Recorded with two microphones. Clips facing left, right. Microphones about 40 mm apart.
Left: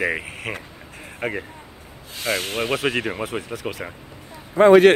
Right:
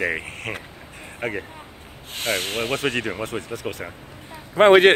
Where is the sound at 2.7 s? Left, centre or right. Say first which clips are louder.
Left 2 dB; centre.